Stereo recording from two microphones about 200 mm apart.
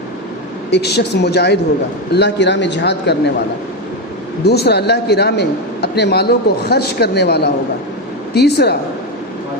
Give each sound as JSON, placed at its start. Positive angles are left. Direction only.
{"t": 0.7, "sound": "speech", "side_deg": 55}
{"t": 4.4, "sound": "speech", "side_deg": 55}